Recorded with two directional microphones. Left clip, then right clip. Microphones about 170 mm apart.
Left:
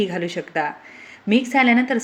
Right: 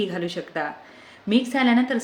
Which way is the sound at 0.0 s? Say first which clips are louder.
Left 3 dB; 15° left (ahead or behind).